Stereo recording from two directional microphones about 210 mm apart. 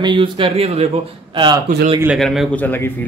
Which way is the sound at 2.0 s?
Centre (ahead or behind).